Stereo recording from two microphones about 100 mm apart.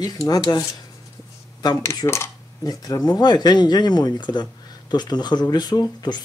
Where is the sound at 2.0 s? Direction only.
35° left (ahead or behind).